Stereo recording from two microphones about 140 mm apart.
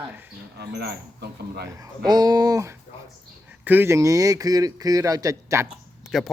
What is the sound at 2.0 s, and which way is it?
Speech, 30° right (ahead or behind).